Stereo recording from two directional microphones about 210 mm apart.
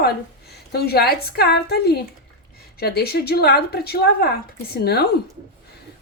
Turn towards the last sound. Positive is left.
turn(degrees=50)  # may be behind; listen again after turning